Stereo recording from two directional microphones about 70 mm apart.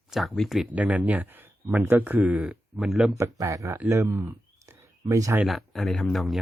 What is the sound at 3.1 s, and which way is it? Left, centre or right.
Speech, right.